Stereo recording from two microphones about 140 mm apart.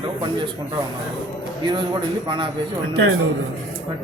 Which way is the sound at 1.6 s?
35° right (ahead or behind).